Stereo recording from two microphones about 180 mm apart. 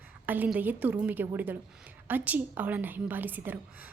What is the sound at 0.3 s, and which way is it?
A woman's voice, 10° right (ahead or behind).